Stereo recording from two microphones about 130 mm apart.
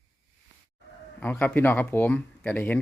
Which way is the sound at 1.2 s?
10° left (ahead or behind).